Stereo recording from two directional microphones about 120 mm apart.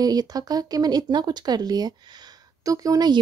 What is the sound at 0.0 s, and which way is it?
Speech, 30° right (ahead or behind).